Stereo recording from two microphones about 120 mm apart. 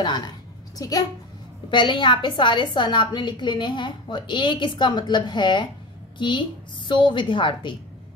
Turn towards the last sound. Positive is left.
turn(degrees=45)  # may be behind; listen again after turning